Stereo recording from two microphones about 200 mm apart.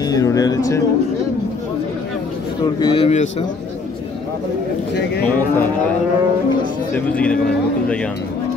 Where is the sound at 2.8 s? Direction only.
30° left (ahead or behind).